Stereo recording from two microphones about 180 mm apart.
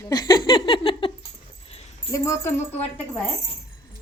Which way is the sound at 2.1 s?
15° left (ahead or behind).